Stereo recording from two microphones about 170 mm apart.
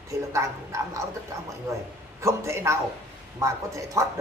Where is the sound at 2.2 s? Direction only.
15° right (ahead or behind).